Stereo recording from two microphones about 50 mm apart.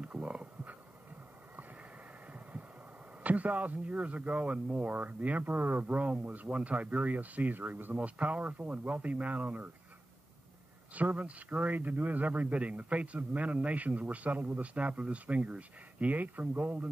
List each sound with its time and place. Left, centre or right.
0.0 s a sound: right
3.3 s speech: right
11.0 s speech: right